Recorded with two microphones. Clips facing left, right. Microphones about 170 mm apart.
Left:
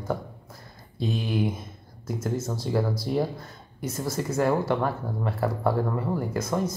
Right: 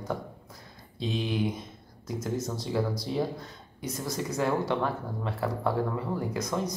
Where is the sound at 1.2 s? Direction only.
5° left (ahead or behind).